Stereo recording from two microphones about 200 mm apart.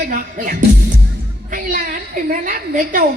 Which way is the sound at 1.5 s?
45° right (ahead or behind).